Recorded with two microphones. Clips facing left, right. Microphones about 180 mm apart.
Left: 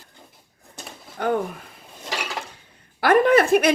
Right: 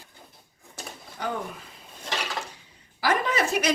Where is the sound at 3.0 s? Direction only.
55° left (ahead or behind).